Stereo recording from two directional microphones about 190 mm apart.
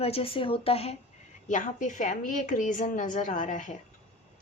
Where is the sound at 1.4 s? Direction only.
40° left (ahead or behind).